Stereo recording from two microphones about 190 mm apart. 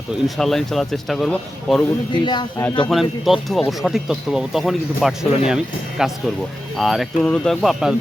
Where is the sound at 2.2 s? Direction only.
25° left (ahead or behind).